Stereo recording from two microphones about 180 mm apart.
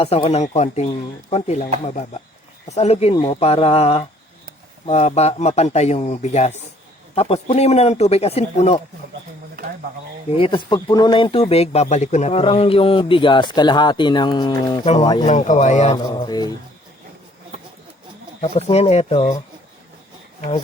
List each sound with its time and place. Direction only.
0.0 s speech: 35° left (ahead or behind)
10.3 s speech: 30° left (ahead or behind)
15.3 s speech: 40° left (ahead or behind)
16.0 s speech: 20° left (ahead or behind)
18.3 s speech: 35° left (ahead or behind)